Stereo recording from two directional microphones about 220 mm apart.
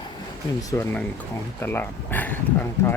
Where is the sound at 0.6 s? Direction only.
15° left (ahead or behind).